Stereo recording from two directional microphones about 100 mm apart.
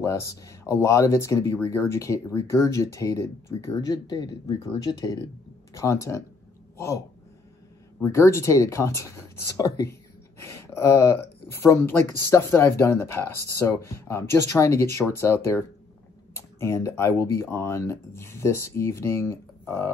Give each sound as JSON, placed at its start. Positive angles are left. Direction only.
{"t": 0.0, "sound": "speech", "side_deg": 30}
{"t": 8.0, "sound": "speech", "side_deg": 30}